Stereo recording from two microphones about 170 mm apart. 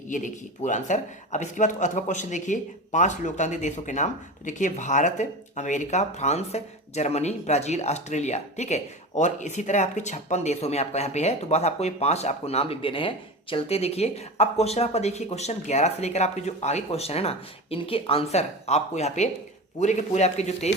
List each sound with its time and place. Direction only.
0.1 s speech: 45° left (ahead or behind)